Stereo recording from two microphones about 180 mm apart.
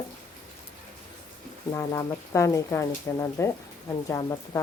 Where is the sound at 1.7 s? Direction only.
15° left (ahead or behind).